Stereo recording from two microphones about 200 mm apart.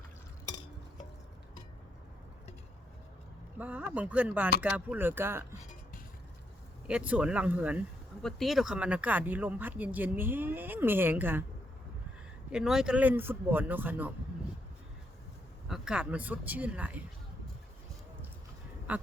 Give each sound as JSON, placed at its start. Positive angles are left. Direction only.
{"t": 3.6, "sound": "speech", "side_deg": -10}
{"t": 6.8, "sound": "speech", "side_deg": -5}
{"t": 12.5, "sound": "speech", "side_deg": -5}
{"t": 15.7, "sound": "speech", "side_deg": -5}
{"t": 18.9, "sound": "quack", "side_deg": -10}